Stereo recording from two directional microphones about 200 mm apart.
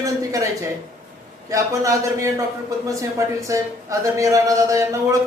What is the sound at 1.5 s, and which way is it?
A man's voice, 15° right (ahead or behind).